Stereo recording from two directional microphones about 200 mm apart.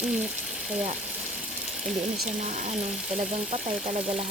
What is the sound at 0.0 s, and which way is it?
Speech, 5° right (ahead or behind).